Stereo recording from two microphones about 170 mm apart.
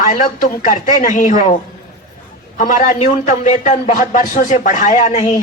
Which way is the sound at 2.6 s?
50° left (ahead or behind).